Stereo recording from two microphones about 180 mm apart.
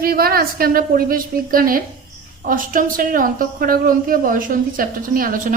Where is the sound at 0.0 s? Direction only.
55° right (ahead or behind).